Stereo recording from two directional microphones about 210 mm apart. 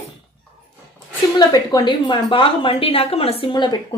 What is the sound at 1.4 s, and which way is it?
A woman's voice, 20° left (ahead or behind).